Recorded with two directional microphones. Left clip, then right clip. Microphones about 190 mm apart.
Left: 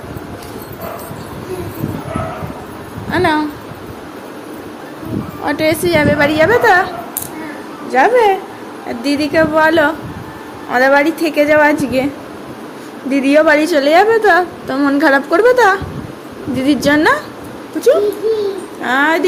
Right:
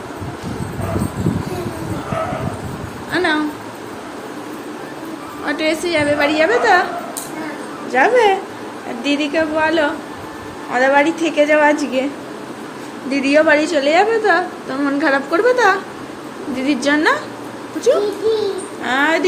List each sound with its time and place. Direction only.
3.1 s a sound: 30° left (ahead or behind)
5.5 s a woman's voice: 30° left (ahead or behind)
7.9 s a woman's voice: 25° left (ahead or behind)
9.0 s a woman's voice: 35° left (ahead or behind)
13.1 s a woman's voice: 30° left (ahead or behind)